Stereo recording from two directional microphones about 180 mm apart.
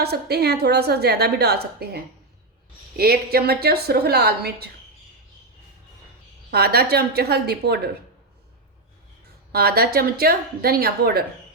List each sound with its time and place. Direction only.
0.0 s a woman's voice: 65° right (ahead or behind)
6.5 s a woman's voice: 60° right (ahead or behind)
9.5 s a woman's voice: 60° right (ahead or behind)